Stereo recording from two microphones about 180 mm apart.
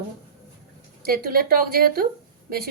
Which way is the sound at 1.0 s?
55° right (ahead or behind).